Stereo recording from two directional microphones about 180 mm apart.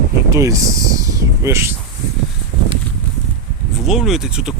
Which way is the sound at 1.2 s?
15° right (ahead or behind).